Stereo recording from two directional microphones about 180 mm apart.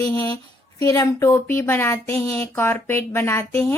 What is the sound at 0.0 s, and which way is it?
Speech, 15° left (ahead or behind).